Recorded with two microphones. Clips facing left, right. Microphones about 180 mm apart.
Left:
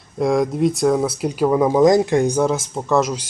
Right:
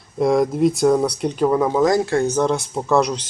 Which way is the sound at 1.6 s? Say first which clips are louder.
Left 3 dB; 20° left (ahead or behind).